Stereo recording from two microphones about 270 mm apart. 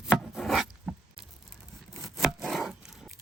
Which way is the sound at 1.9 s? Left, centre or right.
Centre.